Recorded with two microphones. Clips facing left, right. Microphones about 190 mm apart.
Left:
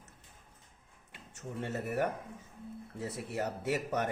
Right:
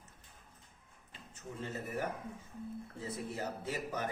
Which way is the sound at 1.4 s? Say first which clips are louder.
Left 4 dB; 70° left (ahead or behind).